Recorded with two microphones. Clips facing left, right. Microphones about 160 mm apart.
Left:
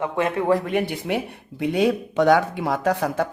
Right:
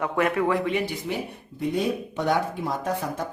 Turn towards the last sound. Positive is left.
turn(degrees=75)  # may be behind; listen again after turning